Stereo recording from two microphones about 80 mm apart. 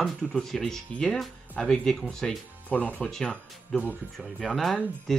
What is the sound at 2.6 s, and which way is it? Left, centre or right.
Speech, centre.